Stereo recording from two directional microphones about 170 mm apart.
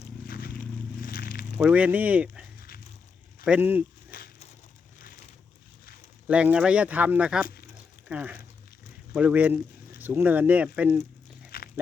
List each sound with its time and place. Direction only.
0.3 s a sound: 60° left (ahead or behind)
1.5 s speech: 10° right (ahead or behind)
2.6 s a sound: 60° left (ahead or behind)
3.4 s speech: 10° right (ahead or behind)
4.1 s crushing: 60° left (ahead or behind)
6.2 s speech: 5° right (ahead or behind)
7.4 s a sound: 60° left (ahead or behind)
8.0 s speech: 10° right (ahead or behind)
11.5 s dog: 65° left (ahead or behind)